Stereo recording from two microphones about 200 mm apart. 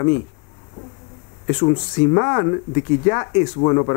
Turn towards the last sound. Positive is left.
turn(degrees=20)  # may be behind; listen again after turning